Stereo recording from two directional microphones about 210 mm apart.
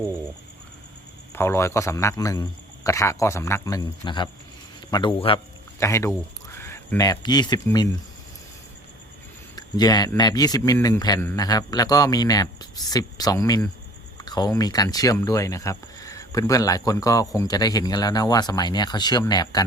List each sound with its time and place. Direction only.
1.3 s speech: 10° left (ahead or behind)
5.8 s speech: 15° left (ahead or behind)
9.6 s speech: 20° left (ahead or behind)